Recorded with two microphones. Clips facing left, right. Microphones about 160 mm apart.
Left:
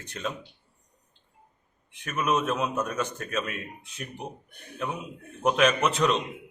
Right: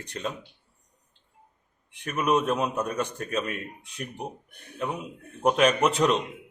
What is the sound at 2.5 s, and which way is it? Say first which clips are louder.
Speech: right 1 dB; centre (ahead or behind).